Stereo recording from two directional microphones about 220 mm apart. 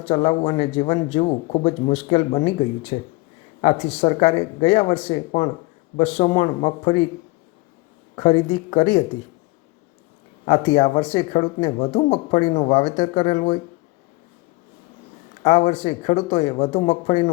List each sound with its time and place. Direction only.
0.0 s speech: 25° left (ahead or behind)
8.1 s speech: 25° left (ahead or behind)
10.4 s speech: 25° left (ahead or behind)
15.4 s speech: 30° left (ahead or behind)